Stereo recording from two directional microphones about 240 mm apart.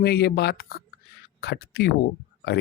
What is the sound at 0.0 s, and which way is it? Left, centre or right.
Speech, left.